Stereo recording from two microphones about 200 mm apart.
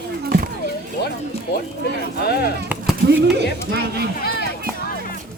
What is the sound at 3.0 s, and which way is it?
Speech, 55° right (ahead or behind).